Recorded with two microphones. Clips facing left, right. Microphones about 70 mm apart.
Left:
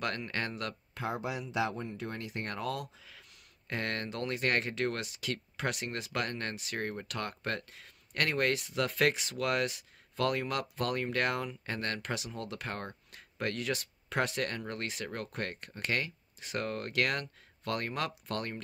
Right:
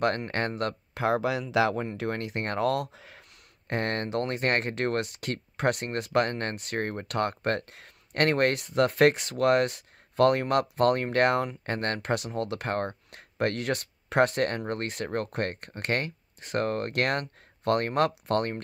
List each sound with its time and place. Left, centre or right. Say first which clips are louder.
0.0 s speech: right 8 dB; right
0.9 s speech: right 10 dB; right